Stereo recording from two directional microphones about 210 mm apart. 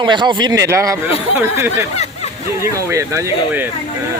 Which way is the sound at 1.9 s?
30° left (ahead or behind).